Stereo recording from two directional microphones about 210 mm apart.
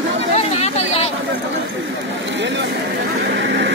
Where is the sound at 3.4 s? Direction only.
55° right (ahead or behind).